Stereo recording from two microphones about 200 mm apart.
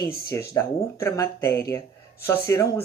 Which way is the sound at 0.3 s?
15° left (ahead or behind).